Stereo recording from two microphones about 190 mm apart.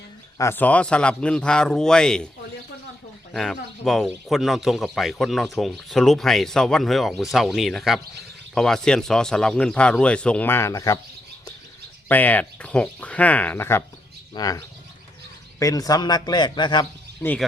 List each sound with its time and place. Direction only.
0.3 s speech: 10° left (ahead or behind)
3.3 s speech: centre (ahead or behind)
12.0 s speech: 10° left (ahead or behind); by 16.8 s 25° left (ahead or behind)